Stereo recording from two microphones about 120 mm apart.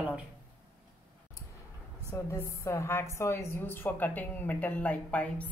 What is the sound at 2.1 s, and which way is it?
A woman's voice, 25° left (ahead or behind).